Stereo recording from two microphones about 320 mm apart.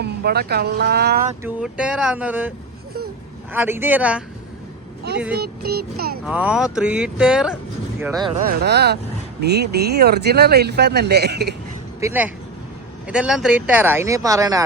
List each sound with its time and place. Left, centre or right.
0.0 s speech: right
1.5 s speech: centre
3.5 s speech: centre
5.3 s speech: right
6.2 s speech: centre
8.4 s speech: right
11.9 s speech: centre